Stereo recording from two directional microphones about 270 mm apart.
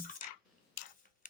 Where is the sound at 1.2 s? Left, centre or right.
Left.